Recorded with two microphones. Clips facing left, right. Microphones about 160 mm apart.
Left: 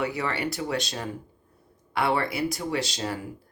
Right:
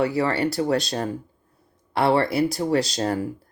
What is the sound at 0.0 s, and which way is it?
Speech, 35° right (ahead or behind).